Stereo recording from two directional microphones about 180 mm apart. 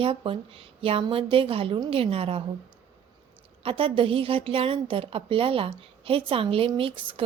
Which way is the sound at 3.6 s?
30° right (ahead or behind).